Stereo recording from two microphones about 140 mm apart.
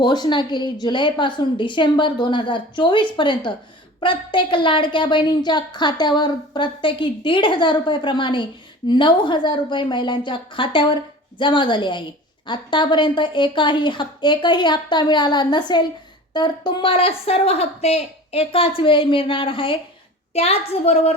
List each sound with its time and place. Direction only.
0.0 s a woman's voice: 30° left (ahead or behind); by 21.2 s 45° left (ahead or behind)